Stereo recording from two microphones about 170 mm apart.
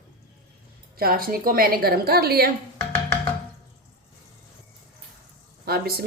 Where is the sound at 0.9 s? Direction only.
60° right (ahead or behind).